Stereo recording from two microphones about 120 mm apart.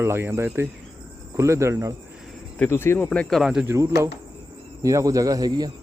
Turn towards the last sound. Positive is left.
turn(degrees=-35)  # may be behind; listen again after turning